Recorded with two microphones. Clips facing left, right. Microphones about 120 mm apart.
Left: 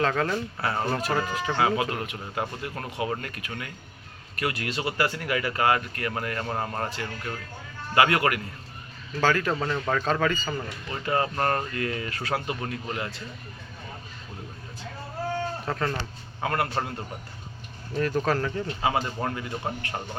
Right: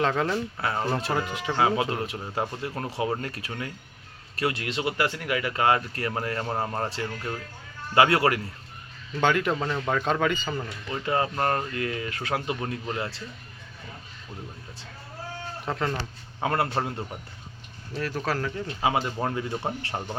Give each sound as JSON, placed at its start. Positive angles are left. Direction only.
{"t": 0.0, "sound": "speech", "side_deg": -15}
{"t": 0.9, "sound": "speech", "side_deg": -25}
{"t": 6.4, "sound": "speech", "side_deg": -15}
{"t": 6.8, "sound": "speech", "side_deg": -30}
{"t": 9.2, "sound": "speech", "side_deg": -15}
{"t": 15.6, "sound": "speech", "side_deg": -15}
{"t": 18.0, "sound": "speech", "side_deg": -5}
{"t": 18.8, "sound": "speech", "side_deg": -15}